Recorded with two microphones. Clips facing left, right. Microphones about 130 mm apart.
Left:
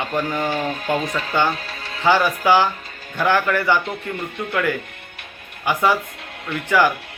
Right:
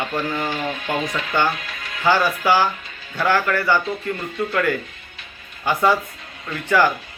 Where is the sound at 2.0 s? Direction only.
15° left (ahead or behind).